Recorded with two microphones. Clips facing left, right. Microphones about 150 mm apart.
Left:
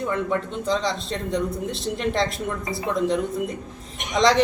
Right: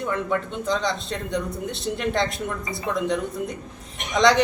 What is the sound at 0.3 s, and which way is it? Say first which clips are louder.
Speech: left 1 dB; centre (ahead or behind).